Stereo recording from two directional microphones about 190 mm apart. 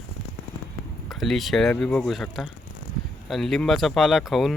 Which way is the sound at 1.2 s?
Centre (ahead or behind).